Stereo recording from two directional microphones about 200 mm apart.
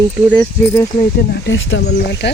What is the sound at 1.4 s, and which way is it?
Speech, 65° left (ahead or behind).